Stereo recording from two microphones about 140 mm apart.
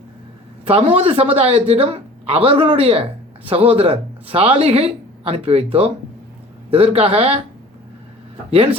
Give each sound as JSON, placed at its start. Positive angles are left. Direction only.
{"t": 0.6, "sound": "speech", "side_deg": -45}
{"t": 6.7, "sound": "speech", "side_deg": -45}
{"t": 8.4, "sound": "speech", "side_deg": -45}